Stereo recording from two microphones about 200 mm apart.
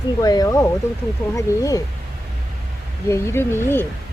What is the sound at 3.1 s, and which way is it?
Speech, 15° left (ahead or behind).